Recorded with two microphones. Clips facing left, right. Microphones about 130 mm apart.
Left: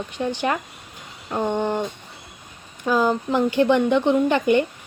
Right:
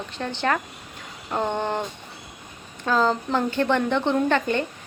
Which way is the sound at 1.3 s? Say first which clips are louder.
Left 2 dB; 10° left (ahead or behind).